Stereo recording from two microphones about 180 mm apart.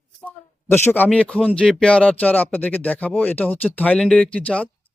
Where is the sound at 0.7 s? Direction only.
10° left (ahead or behind).